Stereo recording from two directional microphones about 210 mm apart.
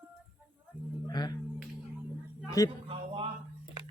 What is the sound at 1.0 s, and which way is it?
Speech, 20° left (ahead or behind).